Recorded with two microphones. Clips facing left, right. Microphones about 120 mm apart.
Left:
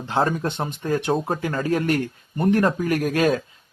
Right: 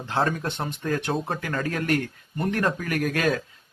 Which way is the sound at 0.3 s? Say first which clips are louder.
Left 3 dB; 20° left (ahead or behind).